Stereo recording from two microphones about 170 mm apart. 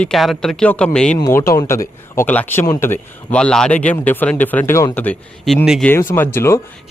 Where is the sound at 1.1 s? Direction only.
20° left (ahead or behind).